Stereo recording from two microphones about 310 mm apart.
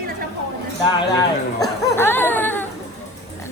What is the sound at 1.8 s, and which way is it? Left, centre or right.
Speech, centre.